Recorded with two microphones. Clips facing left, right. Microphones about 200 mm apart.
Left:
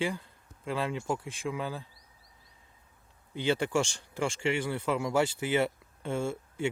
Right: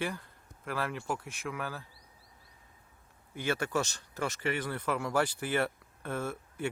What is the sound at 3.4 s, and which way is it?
Speech, 15° left (ahead or behind).